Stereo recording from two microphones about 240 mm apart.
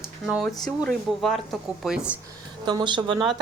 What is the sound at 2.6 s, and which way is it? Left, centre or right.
Speech, centre.